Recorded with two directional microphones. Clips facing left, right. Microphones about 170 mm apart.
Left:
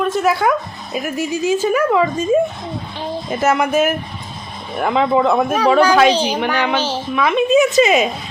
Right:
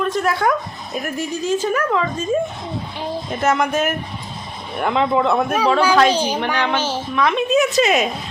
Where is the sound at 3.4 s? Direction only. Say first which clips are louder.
Left 3 dB; 5° left (ahead or behind).